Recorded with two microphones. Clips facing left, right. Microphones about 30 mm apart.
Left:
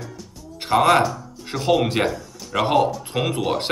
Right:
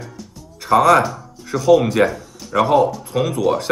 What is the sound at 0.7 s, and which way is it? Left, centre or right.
Speech, left.